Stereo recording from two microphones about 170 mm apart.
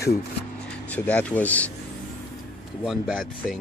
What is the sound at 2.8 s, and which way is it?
Speech, centre (ahead or behind).